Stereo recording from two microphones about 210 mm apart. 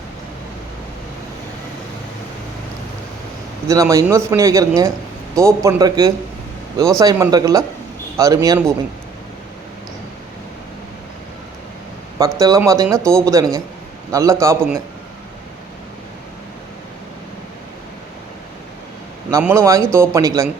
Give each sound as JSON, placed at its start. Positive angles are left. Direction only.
{"t": 3.7, "sound": "speech", "side_deg": -15}
{"t": 12.2, "sound": "speech", "side_deg": -15}
{"t": 19.3, "sound": "speech", "side_deg": -10}